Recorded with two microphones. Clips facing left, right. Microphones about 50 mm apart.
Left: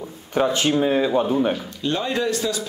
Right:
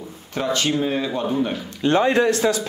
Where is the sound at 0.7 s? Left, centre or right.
Centre.